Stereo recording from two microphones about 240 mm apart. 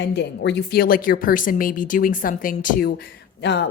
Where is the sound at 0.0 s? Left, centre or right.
Left.